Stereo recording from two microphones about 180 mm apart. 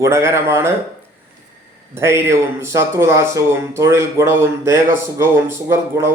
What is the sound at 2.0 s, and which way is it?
Speech, 15° right (ahead or behind).